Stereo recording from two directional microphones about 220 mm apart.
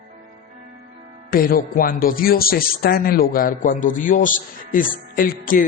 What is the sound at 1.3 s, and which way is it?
A man's voice, 40° left (ahead or behind).